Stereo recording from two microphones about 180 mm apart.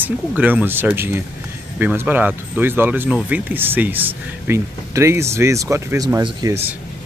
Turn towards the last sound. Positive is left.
turn(degrees=-20)  # may be behind; listen again after turning